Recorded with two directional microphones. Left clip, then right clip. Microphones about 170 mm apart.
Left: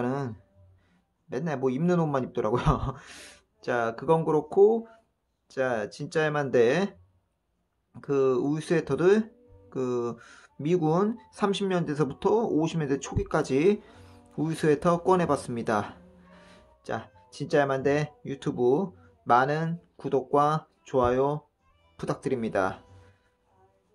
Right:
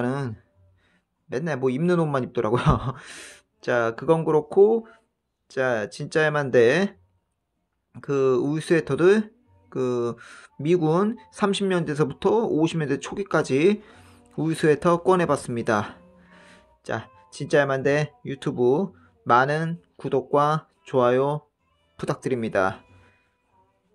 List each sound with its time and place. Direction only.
0.0 s music: 25° right (ahead or behind)
1.3 s speech: 25° right (ahead or behind)